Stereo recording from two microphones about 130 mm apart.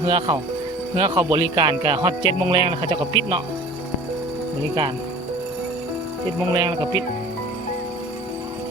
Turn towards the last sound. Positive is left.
turn(degrees=-30)  # may be behind; listen again after turning